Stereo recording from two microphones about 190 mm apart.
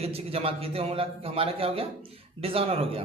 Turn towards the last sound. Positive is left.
turn(degrees=-30)  # may be behind; listen again after turning